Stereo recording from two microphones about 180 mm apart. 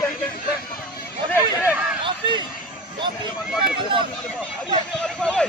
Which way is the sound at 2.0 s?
25° right (ahead or behind).